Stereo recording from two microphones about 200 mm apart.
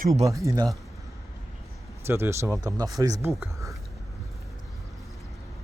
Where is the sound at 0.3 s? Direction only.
15° right (ahead or behind).